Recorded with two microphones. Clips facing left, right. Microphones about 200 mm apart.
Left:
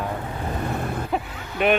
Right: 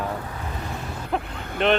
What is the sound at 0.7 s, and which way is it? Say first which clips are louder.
Vehicle: left 6 dB; 55° left (ahead or behind).